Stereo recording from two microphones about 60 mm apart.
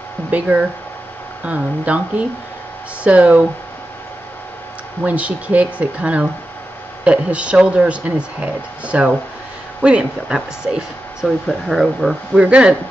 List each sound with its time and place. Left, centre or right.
0.3 s speech: right
5.0 s speech: right
11.2 s speech: centre
12.4 s speech: centre